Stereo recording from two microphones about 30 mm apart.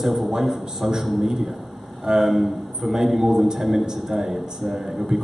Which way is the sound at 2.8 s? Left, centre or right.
Centre.